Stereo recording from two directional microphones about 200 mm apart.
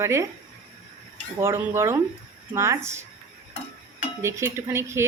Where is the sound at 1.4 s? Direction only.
10° right (ahead or behind).